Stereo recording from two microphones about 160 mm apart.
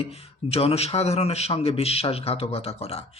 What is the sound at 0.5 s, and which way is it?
Speech, 40° left (ahead or behind).